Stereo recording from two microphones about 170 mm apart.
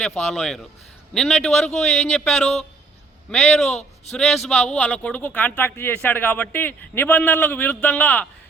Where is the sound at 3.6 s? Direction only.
40° left (ahead or behind).